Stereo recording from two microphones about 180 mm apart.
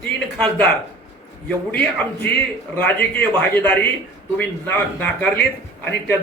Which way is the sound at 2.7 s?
10° left (ahead or behind).